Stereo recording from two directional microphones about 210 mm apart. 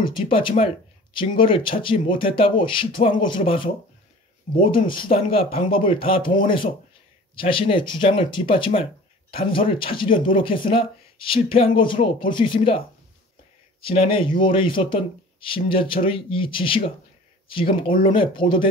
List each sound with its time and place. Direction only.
0.1 s speech: 25° left (ahead or behind)